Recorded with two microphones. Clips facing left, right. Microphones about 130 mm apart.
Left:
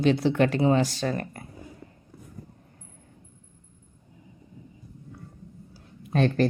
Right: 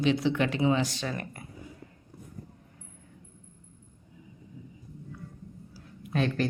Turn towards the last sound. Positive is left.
turn(degrees=35)  # may be behind; listen again after turning